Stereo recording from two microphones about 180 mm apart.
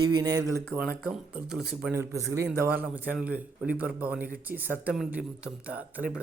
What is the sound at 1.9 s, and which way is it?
A man's voice, 15° right (ahead or behind).